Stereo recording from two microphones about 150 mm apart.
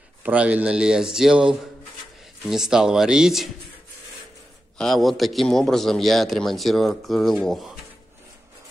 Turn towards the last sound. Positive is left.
turn(degrees=0)  # may be behind; listen again after turning